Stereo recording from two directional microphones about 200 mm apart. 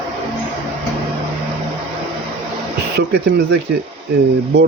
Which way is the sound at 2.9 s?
65° right (ahead or behind).